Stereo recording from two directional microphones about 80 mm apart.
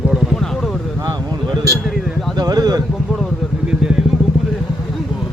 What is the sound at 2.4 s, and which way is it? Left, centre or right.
Speech, right.